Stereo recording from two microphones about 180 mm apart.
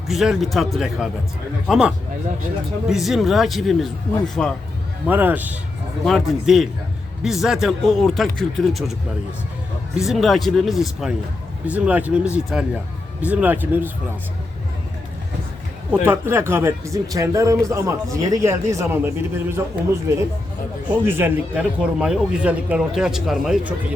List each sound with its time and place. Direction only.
0.1 s speech: centre (ahead or behind)
2.9 s speech: centre (ahead or behind)
5.0 s speech: 10° right (ahead or behind)
10.0 s speech: centre (ahead or behind)
15.9 s speech: 15° right (ahead or behind)